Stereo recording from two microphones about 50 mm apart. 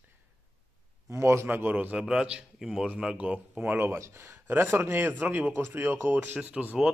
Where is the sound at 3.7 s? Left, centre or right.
Right.